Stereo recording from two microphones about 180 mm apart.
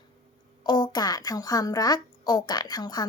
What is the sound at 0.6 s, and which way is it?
A woman's voice, 25° left (ahead or behind).